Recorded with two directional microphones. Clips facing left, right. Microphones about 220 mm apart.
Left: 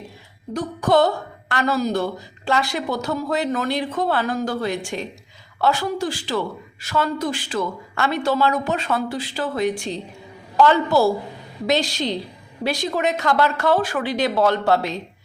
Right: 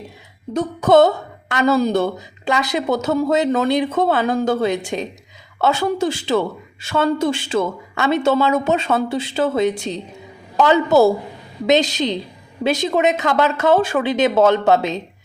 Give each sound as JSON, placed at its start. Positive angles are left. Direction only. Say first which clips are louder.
{"t": 0.5, "sound": "speech", "louder": "right 5 dB", "side_deg": -25}